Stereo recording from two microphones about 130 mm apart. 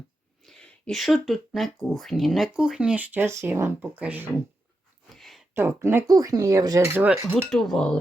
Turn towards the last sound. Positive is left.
turn(degrees=5)  # may be behind; listen again after turning